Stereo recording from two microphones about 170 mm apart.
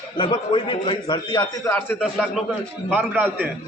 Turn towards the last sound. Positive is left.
turn(degrees=-10)  # may be behind; listen again after turning